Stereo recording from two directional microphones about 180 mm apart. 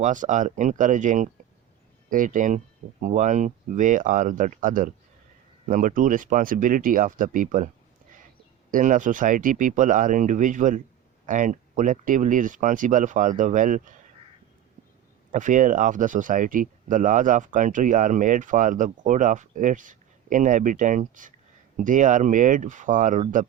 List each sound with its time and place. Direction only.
0.0 s speech: 45° right (ahead or behind)
8.7 s speech: 45° right (ahead or behind)
15.3 s speech: 45° right (ahead or behind)